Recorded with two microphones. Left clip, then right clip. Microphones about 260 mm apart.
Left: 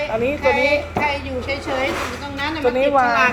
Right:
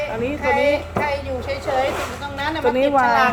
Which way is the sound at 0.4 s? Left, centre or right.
Centre.